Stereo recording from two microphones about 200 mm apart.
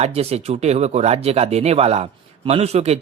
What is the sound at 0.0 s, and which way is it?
Speech, 30° right (ahead or behind).